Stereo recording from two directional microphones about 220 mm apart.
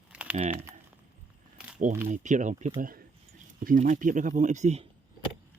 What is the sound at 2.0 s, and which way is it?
Speech, 35° right (ahead or behind).